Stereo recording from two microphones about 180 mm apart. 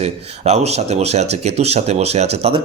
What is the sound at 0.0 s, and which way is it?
A man's voice, 35° right (ahead or behind).